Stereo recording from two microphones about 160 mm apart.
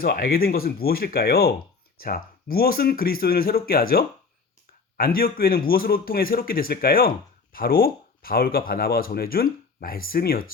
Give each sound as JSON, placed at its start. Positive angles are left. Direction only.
{"t": 0.0, "sound": "speech", "side_deg": 70}